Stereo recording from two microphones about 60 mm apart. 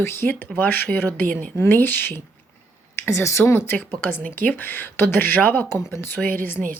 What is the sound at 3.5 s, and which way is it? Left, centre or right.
Speech, left.